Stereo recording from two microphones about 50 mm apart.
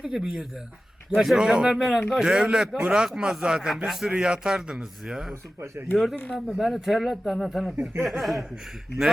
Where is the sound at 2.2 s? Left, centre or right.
Centre.